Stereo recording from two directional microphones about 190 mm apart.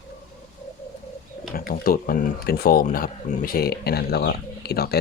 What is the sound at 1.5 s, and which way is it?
Speech, 50° left (ahead or behind).